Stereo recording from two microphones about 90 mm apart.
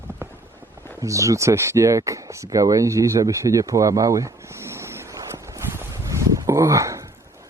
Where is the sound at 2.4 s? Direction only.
40° right (ahead or behind).